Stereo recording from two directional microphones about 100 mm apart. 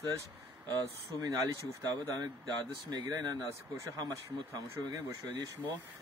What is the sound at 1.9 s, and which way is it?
Speech, 40° right (ahead or behind).